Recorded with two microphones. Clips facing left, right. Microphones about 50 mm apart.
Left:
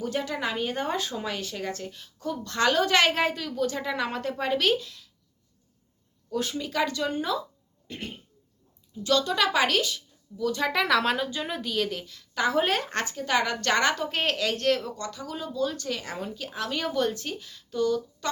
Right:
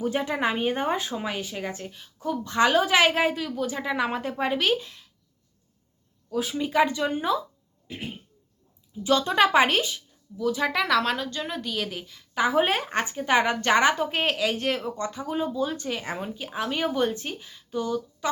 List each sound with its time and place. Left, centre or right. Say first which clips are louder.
0.0 s a woman's voice: right 4 dB; right
4.8 s speech: right 1 dB; right
6.3 s a woman's voice: right 1 dB; centre
6.6 s speech: right 7 dB; right
7.9 s a woman's voice: right 1 dB; centre
9.2 s speech: right 4 dB; right
10.3 s a woman's voice: right 1 dB; centre